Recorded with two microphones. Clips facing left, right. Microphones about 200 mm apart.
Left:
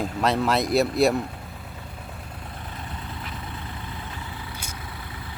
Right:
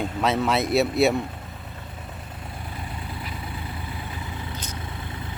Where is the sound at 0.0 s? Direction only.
Centre (ahead or behind).